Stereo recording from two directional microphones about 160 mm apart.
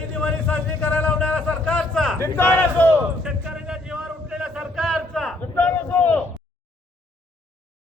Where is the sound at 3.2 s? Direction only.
5° right (ahead or behind).